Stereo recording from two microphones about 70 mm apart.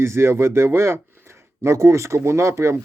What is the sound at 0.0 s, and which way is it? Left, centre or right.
Speech, right.